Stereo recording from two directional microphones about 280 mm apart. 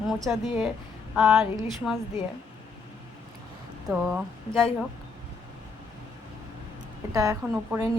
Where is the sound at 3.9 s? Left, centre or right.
Centre.